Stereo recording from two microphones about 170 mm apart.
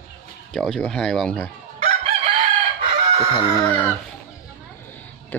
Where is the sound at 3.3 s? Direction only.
25° left (ahead or behind).